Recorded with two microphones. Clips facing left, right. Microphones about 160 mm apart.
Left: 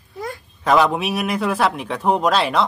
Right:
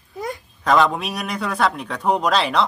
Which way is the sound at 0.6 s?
5° left (ahead or behind).